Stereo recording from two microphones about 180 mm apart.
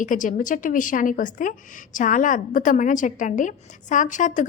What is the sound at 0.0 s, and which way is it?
A woman's voice, 45° left (ahead or behind).